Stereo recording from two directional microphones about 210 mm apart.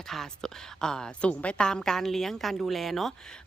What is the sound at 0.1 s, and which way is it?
A woman's voice, centre (ahead or behind).